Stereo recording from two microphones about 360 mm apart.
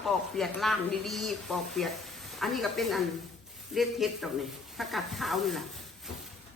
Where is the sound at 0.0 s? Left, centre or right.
Centre.